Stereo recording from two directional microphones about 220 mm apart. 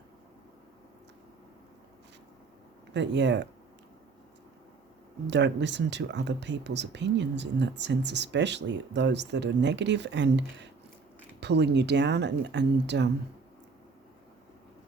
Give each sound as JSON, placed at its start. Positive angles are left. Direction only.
{"t": 2.9, "sound": "speech", "side_deg": -55}
{"t": 5.3, "sound": "speech", "side_deg": -50}